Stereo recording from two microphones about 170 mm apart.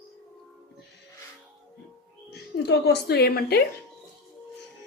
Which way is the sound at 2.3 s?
80° left.